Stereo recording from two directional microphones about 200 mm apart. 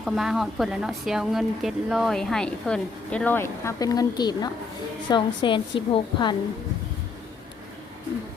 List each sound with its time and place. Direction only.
0.0 s a woman's voice: centre (ahead or behind); by 6.3 s 20° left (ahead or behind)